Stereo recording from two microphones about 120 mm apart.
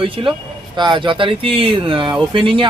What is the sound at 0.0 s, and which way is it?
A man's voice, 45° right (ahead or behind).